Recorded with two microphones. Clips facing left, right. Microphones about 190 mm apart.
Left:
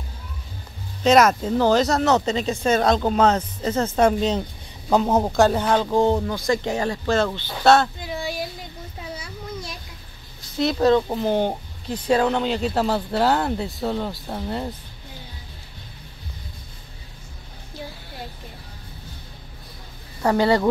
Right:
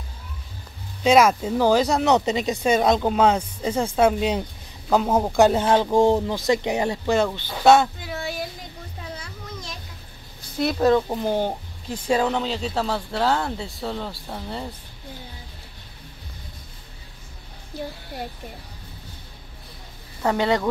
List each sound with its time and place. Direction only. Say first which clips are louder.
1.0 s speech: left 1 dB; 10° right (ahead or behind)
5.3 s speech: right 4 dB; 20° right (ahead or behind)
8.0 s child singing: left 2 dB; centre (ahead or behind)
9.1 s a sound: left 5 dB; 10° left (ahead or behind)
10.6 s speech: left 1 dB; 5° right (ahead or behind)
20.2 s speech: left 3 dB; 5° left (ahead or behind)